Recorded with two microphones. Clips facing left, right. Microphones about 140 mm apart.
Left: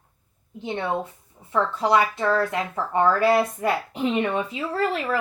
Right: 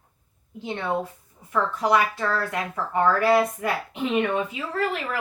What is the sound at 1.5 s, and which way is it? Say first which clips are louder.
Speech: left 1 dB; 25° left (ahead or behind).